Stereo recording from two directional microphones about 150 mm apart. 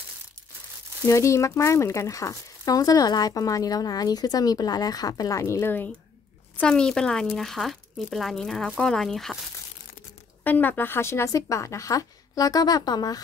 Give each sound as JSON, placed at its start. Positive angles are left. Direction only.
{"t": 1.0, "sound": "speech", "side_deg": 20}
{"t": 10.4, "sound": "speech", "side_deg": 10}